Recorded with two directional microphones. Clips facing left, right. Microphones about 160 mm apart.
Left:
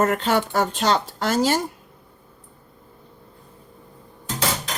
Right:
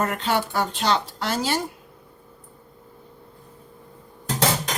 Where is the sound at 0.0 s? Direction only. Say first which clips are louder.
Left 4 dB; 45° left (ahead or behind).